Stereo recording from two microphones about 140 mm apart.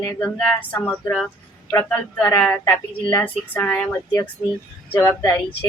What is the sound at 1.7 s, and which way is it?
Speech, 20° left (ahead or behind).